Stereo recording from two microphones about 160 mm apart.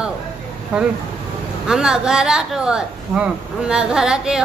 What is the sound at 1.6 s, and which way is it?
Speech, 5° right (ahead or behind).